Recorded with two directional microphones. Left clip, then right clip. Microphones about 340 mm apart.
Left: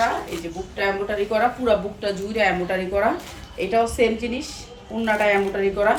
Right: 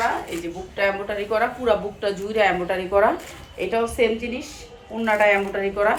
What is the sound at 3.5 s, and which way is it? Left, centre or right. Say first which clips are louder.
Speech: left 2 dB; centre.